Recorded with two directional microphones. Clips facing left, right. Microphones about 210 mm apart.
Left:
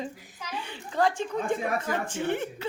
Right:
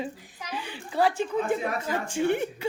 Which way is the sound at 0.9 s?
10° right (ahead or behind).